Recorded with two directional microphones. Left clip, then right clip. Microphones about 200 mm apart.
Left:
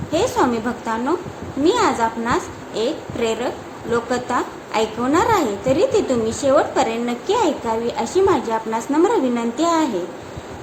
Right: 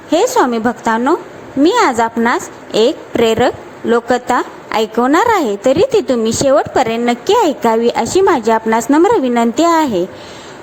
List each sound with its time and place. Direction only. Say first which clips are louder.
0.1 s a woman's voice: right 7 dB; 40° right (ahead or behind)